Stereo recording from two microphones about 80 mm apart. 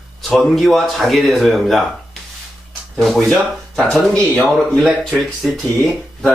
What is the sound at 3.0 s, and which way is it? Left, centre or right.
Speech, centre.